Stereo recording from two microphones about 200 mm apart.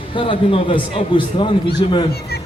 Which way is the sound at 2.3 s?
50° left (ahead or behind).